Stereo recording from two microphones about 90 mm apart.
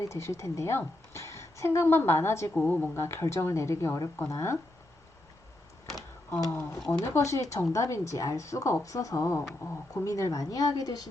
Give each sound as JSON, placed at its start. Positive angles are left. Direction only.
{"t": 0.0, "sound": "a woman's voice", "side_deg": 35}
{"t": 2.6, "sound": "a woman's voice", "side_deg": 15}
{"t": 6.5, "sound": "a woman's voice", "side_deg": 25}